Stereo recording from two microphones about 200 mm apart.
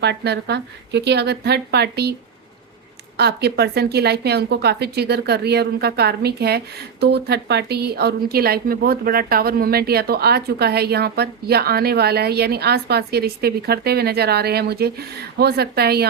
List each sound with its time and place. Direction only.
0.0 s a woman's voice: 55° right (ahead or behind)
3.2 s speech: 55° right (ahead or behind)